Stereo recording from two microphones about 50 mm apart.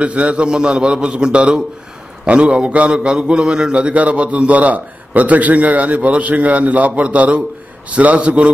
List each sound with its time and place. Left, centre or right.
0.0 s a man's voice: right